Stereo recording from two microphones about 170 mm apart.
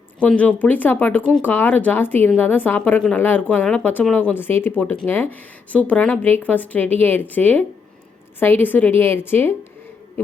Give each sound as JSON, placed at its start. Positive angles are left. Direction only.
{"t": 0.2, "sound": "a woman's voice", "side_deg": 10}